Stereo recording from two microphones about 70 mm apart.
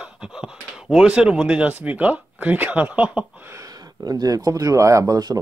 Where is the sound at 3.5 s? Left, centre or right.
Right.